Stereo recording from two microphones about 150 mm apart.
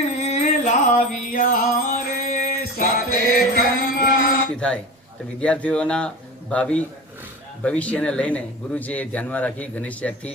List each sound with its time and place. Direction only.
0.2 s music: 50° left (ahead or behind); by 4.0 s 80° left
4.5 s speech: 5° left (ahead or behind)